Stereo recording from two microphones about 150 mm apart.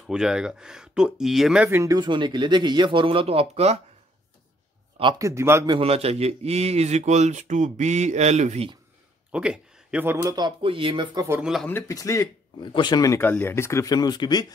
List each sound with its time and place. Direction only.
0.0 s speech: 5° right (ahead or behind)
2.0 s speech: 30° right (ahead or behind)
5.2 s speech: 20° right (ahead or behind)
5.7 s speech: 40° right (ahead or behind)
9.3 s speech: 5° right (ahead or behind); by 11.1 s 35° right (ahead or behind)
11.1 s speech: 15° right (ahead or behind)
11.4 s speech: centre (ahead or behind)
11.7 s speech: 20° left (ahead or behind)